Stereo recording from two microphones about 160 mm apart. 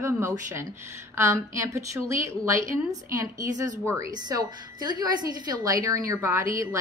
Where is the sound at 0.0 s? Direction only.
20° right (ahead or behind).